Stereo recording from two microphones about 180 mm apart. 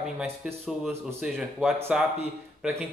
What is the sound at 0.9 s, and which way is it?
A man's voice, 15° right (ahead or behind).